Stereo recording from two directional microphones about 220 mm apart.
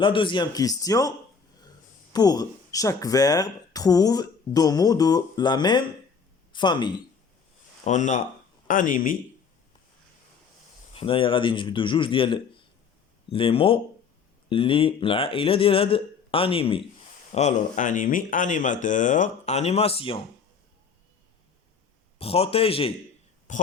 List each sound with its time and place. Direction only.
0.0 s speech: 20° left (ahead or behind)
2.1 s speech: 15° left (ahead or behind)
7.9 s speech: 35° left (ahead or behind)
10.9 s speech: 25° left (ahead or behind)
22.2 s speech: 25° left (ahead or behind)